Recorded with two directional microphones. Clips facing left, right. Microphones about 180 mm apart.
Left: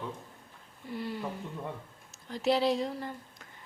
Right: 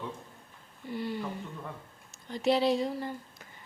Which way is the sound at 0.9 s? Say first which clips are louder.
Right 2 dB; centre (ahead or behind).